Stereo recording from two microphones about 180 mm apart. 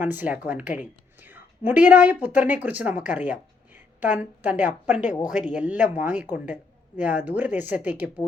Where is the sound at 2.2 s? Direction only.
10° right (ahead or behind).